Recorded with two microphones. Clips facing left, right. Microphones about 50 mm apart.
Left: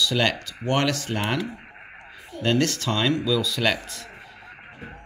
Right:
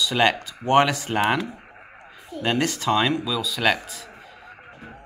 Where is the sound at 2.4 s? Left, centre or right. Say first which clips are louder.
Even; centre.